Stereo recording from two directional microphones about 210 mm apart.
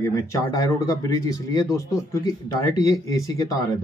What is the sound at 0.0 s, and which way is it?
Speech, 15° left (ahead or behind).